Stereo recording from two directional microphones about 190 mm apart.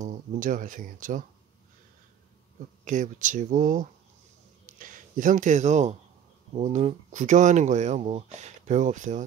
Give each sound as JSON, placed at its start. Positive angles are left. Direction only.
{"t": 0.0, "sound": "speech", "side_deg": -45}
{"t": 2.8, "sound": "speech", "side_deg": -40}